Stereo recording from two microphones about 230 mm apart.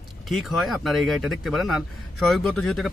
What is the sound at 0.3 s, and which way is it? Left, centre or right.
Speech, centre.